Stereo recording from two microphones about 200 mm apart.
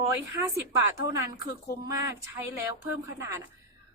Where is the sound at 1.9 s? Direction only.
15° right (ahead or behind).